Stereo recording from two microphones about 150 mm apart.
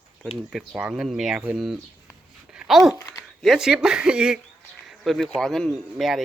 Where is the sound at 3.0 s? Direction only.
20° left (ahead or behind).